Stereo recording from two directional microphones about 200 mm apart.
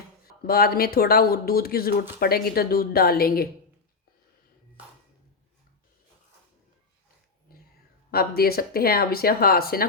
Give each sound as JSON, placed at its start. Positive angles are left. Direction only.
{"t": 0.3, "sound": "speech", "side_deg": 50}
{"t": 7.5, "sound": "a sound", "side_deg": 50}
{"t": 8.1, "sound": "speech", "side_deg": 50}